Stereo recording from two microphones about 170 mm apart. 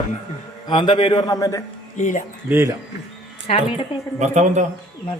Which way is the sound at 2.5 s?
15° right (ahead or behind).